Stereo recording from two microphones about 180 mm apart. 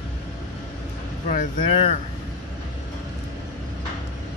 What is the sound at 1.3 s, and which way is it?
Speech, 40° left (ahead or behind).